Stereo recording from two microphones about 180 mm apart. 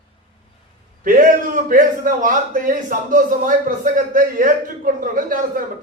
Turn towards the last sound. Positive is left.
turn(degrees=-50)  # may be behind; listen again after turning